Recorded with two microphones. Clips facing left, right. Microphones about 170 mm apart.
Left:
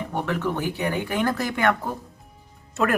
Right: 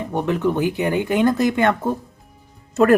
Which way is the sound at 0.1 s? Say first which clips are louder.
Right 7 dB; 20° right (ahead or behind).